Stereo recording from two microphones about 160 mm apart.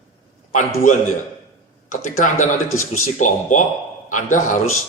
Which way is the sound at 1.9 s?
55° left (ahead or behind).